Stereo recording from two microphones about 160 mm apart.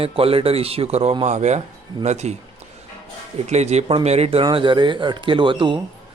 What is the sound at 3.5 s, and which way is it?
Speech, 45° right (ahead or behind).